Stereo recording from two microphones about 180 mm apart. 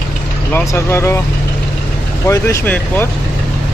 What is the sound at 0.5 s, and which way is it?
Speech, 15° left (ahead or behind).